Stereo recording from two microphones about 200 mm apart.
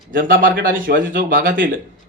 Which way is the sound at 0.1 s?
45° right (ahead or behind).